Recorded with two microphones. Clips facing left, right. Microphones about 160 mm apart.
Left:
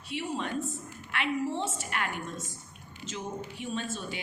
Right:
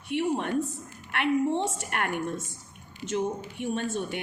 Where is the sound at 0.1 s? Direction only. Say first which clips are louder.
Right 6 dB; 60° right (ahead or behind).